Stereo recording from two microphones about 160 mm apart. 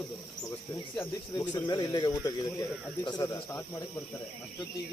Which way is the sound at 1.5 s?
25° left (ahead or behind).